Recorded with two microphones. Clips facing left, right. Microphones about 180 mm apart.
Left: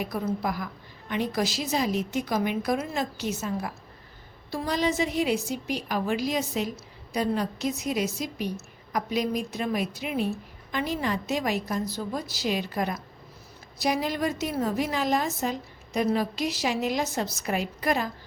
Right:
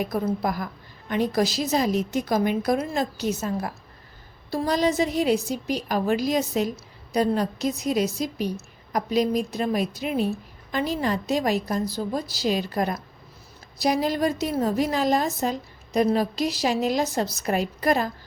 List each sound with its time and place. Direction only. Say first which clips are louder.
0.0 s a woman's voice: right 4 dB; 40° right (ahead or behind)
4.5 s a woman's voice: right 4 dB; 40° right (ahead or behind)